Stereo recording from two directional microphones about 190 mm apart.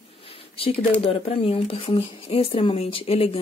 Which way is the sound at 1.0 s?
30° left (ahead or behind).